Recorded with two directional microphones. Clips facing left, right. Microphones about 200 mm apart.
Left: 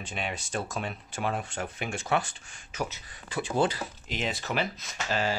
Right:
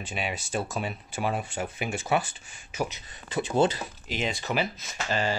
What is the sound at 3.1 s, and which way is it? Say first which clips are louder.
Speech: right 3 dB; 20° right (ahead or behind).